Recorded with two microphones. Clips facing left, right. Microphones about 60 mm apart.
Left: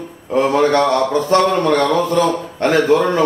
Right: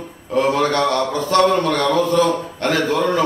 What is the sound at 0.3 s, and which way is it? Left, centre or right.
A man's voice, left.